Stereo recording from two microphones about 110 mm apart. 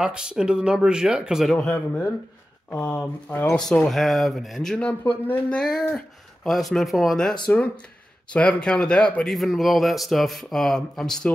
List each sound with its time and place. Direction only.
0.0 s speech: 5° right (ahead or behind)
2.7 s speech: 25° left (ahead or behind)
3.0 s speech: 15° left (ahead or behind)